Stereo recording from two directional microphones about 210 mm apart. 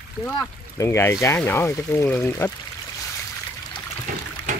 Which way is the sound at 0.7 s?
10° left (ahead or behind).